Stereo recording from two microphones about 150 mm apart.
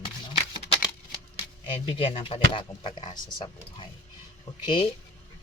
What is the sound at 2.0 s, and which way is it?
Speech, 35° left (ahead or behind).